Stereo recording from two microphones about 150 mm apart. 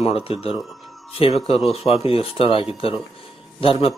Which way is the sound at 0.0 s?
40° left (ahead or behind).